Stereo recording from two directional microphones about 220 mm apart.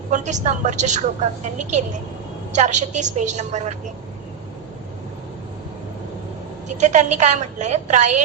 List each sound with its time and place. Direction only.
0.1 s a woman's voice: 30° right (ahead or behind)
6.7 s a woman's voice: 30° right (ahead or behind)